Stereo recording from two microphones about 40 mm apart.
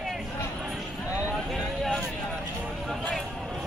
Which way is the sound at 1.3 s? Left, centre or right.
Centre.